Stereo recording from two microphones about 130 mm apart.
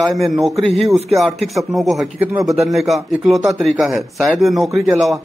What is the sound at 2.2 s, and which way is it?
Speech, 15° right (ahead or behind).